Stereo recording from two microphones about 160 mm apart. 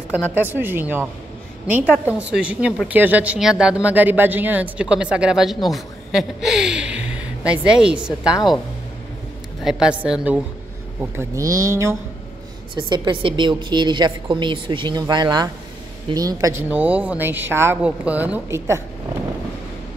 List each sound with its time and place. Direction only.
0.1 s speech: 10° right (ahead or behind)
9.6 s a woman's voice: 5° right (ahead or behind)
11.0 s speech: 15° right (ahead or behind)
12.7 s a woman's voice: 30° right (ahead or behind)
16.6 s speech: 10° right (ahead or behind)